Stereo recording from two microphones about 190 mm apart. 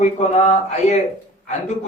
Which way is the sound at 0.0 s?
40° left (ahead or behind).